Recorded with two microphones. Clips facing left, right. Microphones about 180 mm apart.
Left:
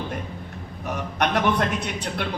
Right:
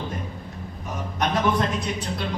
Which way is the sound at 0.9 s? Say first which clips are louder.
Left 2 dB; 65° left (ahead or behind).